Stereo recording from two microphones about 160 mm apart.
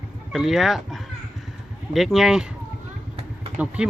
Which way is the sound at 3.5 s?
5° right (ahead or behind).